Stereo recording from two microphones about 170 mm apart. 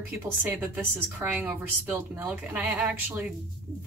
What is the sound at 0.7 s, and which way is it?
A woman's voice, 10° right (ahead or behind).